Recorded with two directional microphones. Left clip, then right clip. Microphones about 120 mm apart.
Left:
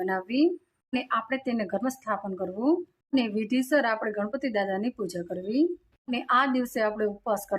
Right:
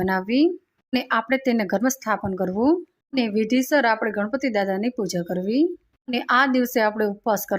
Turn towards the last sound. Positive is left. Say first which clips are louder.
# right 5 dB
turn(degrees=-35)  # may be behind; listen again after turning